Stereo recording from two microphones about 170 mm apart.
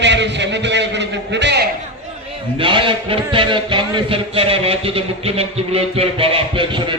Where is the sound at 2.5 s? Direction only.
30° right (ahead or behind).